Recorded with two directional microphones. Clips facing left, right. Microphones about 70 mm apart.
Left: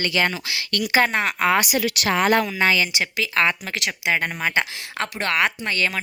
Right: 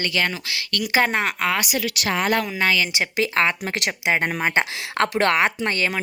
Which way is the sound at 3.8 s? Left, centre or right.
Right.